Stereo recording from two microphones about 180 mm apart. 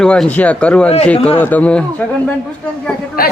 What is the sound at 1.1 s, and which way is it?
Speech, 35° left (ahead or behind).